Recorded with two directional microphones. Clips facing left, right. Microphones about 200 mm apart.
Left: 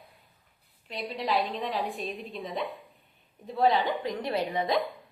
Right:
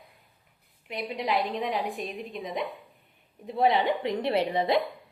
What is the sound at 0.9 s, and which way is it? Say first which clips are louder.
A woman's voice: right 1 dB; 20° right (ahead or behind).